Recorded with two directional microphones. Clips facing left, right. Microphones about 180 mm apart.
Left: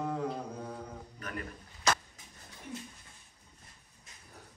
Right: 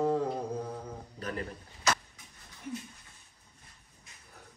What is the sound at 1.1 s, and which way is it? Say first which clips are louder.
Speech: right 5 dB; 30° right (ahead or behind).